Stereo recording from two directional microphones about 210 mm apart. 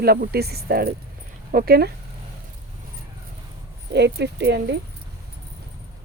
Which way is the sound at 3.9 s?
55° right (ahead or behind).